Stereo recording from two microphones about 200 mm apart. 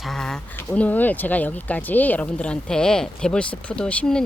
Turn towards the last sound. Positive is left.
turn(degrees=5)  # may be behind; listen again after turning